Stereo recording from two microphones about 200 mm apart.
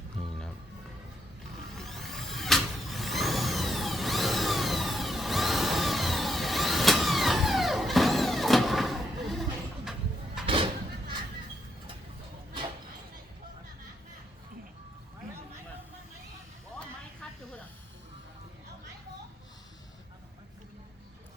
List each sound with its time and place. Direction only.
0.2 s music: centre (ahead or behind)
1.7 s vehicle: centre (ahead or behind)
10.4 s a sound: 25° right (ahead or behind)
16.7 s snake: 5° left (ahead or behind)